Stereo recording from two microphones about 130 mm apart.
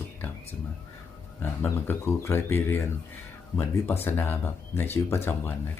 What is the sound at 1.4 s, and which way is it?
Speech, 15° left (ahead or behind).